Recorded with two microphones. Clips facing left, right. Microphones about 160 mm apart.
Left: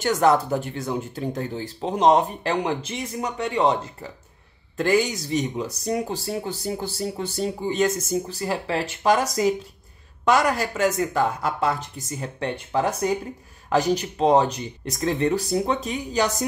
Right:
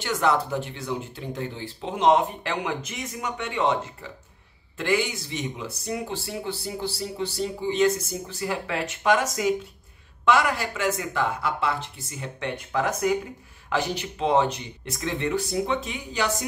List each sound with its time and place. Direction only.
0.0 s speech: 45° left (ahead or behind)